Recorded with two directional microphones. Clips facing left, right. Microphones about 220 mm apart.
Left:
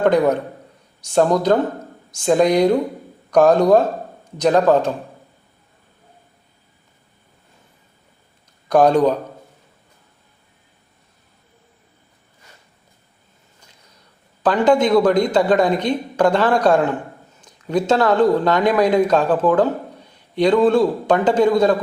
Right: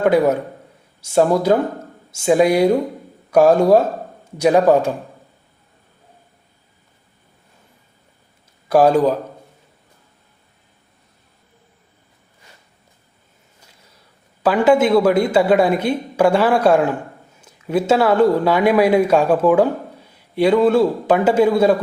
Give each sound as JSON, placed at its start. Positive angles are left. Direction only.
{"t": 0.0, "sound": "a woman's voice", "side_deg": -5}
{"t": 8.6, "sound": "a man's voice", "side_deg": -5}
{"t": 14.4, "sound": "a woman's voice", "side_deg": -10}